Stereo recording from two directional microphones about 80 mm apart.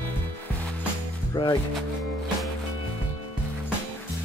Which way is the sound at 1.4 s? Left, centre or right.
Left.